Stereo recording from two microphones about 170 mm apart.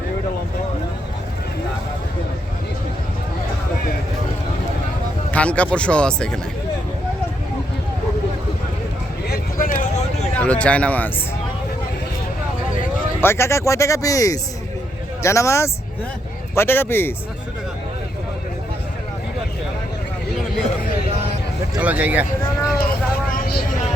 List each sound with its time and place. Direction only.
5.3 s speech: 5° left (ahead or behind)
9.3 s vehicle: 60° left (ahead or behind)
10.4 s speech: 5° left (ahead or behind)
13.2 s speech: 15° left (ahead or behind)
21.8 s speech: 10° right (ahead or behind)
23.3 s vehicle: 60° left (ahead or behind)